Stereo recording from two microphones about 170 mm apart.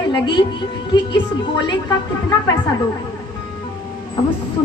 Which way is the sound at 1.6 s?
25° left (ahead or behind).